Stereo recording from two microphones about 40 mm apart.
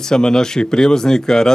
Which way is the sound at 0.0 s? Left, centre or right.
Centre.